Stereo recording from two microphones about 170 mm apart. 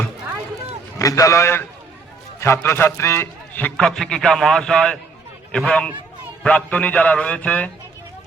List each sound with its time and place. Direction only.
0.9 s a man's voice: 20° left (ahead or behind)